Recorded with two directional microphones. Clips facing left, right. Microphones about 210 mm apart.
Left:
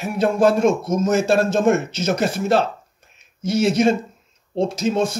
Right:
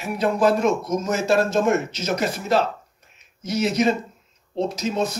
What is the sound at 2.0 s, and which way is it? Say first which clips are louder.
Speech: left 4 dB; 30° left (ahead or behind).